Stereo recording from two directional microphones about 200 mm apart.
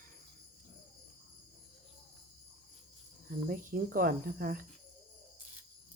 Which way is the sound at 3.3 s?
45° right (ahead or behind).